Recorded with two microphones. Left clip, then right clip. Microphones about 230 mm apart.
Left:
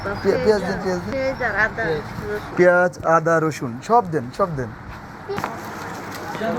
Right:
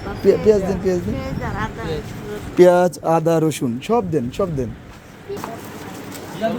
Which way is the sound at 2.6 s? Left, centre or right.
Right.